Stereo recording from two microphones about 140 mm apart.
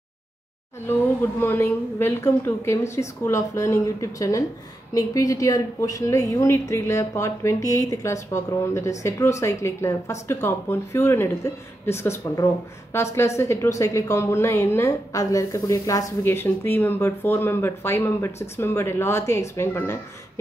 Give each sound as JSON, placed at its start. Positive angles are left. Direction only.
{"t": 0.8, "sound": "a woman's voice", "side_deg": 15}